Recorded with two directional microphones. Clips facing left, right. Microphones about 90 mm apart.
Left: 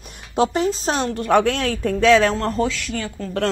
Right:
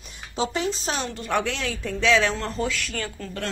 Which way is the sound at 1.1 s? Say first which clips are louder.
Left 11 dB; 55° left (ahead or behind).